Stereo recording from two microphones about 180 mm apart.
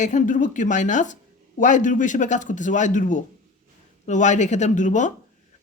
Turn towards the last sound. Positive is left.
turn(degrees=45)  # may be behind; listen again after turning